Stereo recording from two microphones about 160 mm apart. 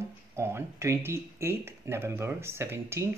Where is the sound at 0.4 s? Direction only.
15° right (ahead or behind).